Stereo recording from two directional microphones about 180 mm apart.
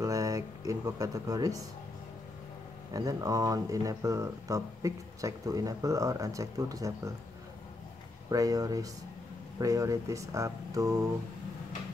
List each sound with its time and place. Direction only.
0.0 s speech: 20° right (ahead or behind)
2.9 s speech: 20° right (ahead or behind)
8.3 s speech: 20° right (ahead or behind)